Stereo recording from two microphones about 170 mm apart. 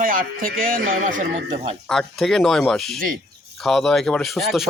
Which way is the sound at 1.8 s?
5° left (ahead or behind).